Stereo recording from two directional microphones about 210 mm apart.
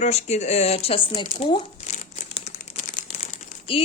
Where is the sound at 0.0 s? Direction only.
30° left (ahead or behind).